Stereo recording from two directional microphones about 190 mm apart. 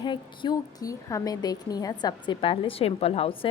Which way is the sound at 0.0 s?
25° left (ahead or behind).